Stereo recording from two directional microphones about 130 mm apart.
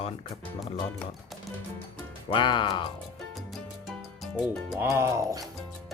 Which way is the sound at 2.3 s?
40° left (ahead or behind).